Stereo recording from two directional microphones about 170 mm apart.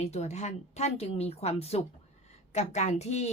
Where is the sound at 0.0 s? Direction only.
40° left (ahead or behind).